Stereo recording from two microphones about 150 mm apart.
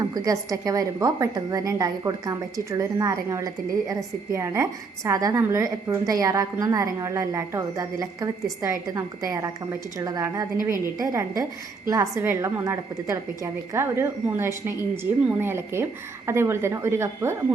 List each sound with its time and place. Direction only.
0.0 s a woman's voice: 25° right (ahead or behind)